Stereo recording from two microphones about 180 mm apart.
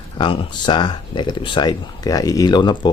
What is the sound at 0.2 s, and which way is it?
Speech, 25° left (ahead or behind).